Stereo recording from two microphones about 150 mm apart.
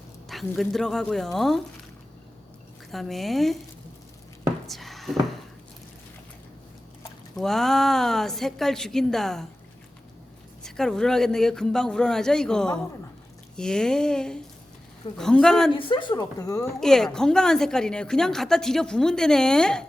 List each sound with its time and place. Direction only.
0.3 s a woman's voice: centre (ahead or behind)
2.9 s a woman's voice: centre (ahead or behind)
4.6 s a sound: centre (ahead or behind)
7.3 s a woman's voice: 5° left (ahead or behind)
10.6 s a woman's voice: 5° left (ahead or behind)
15.7 s speech: 35° left (ahead or behind)
16.8 s a woman's voice: 5° left (ahead or behind)